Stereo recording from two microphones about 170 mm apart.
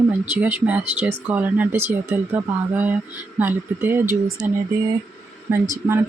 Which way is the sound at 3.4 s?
10° right (ahead or behind).